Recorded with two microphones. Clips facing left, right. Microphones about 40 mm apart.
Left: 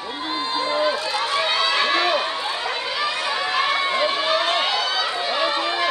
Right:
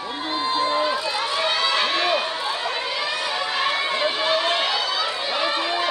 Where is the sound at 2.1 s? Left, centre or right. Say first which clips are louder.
Left 1 dB; centre.